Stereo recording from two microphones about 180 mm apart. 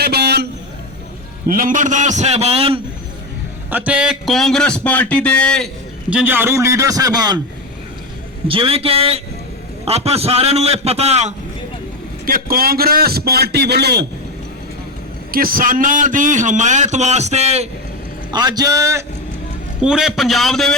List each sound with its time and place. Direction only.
0.0 s vehicle: 65° right (ahead or behind)
1.5 s a man's voice: 50° right (ahead or behind); by 2.8 s 30° right (ahead or behind)
3.7 s speech: 10° right (ahead or behind)
6.1 s a man's voice: 10° right (ahead or behind)
8.4 s a man's voice: 30° right (ahead or behind)
12.2 s a man's voice: 55° right (ahead or behind)
15.3 s a man's voice: 55° right (ahead or behind); by 17.7 s 35° right (ahead or behind)
18.3 s a man's voice: 20° right (ahead or behind)
19.8 s speech: 5° right (ahead or behind)